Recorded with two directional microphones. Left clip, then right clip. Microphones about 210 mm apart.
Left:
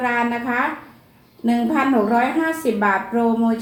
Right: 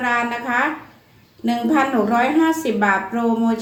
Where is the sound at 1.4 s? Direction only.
20° right (ahead or behind).